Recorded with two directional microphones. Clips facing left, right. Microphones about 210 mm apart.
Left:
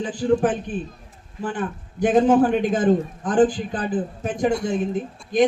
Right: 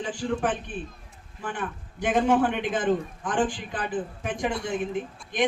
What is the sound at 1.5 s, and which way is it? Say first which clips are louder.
Speech: left 6 dB; 40° left (ahead or behind).